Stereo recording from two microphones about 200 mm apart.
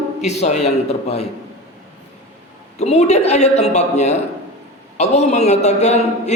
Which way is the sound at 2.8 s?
35° left (ahead or behind).